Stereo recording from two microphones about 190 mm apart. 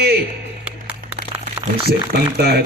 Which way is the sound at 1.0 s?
50° right (ahead or behind).